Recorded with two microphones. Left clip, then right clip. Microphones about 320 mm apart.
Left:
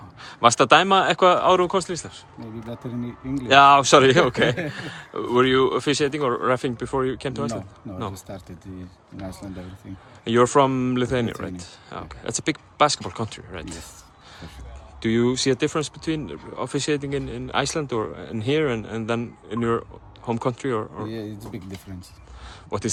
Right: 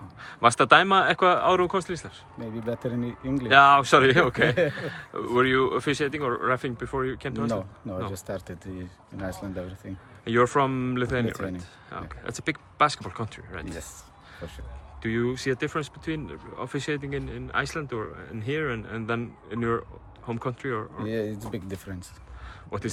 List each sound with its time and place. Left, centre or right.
0.2 s speech: centre
2.6 s speech: centre
3.5 s speech: centre
10.2 s speech: centre
15.0 s speech: centre
21.2 s speech: centre
22.4 s a sound: centre